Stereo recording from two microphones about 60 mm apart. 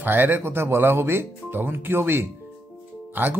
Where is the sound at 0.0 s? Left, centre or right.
Right.